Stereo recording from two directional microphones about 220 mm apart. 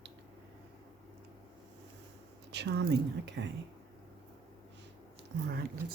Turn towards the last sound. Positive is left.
turn(degrees=-45)  # may be behind; listen again after turning